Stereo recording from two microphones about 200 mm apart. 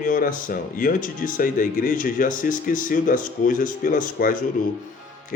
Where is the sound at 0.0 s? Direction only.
45° left (ahead or behind).